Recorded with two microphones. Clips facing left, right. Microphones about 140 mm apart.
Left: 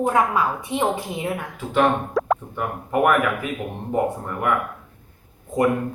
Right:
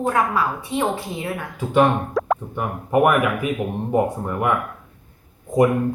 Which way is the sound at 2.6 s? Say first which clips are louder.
Right 6 dB; 15° right (ahead or behind).